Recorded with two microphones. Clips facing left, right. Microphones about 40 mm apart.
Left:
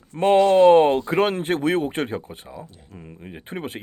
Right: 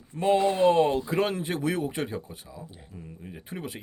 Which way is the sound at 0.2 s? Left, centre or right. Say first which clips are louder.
Left 7 dB; left.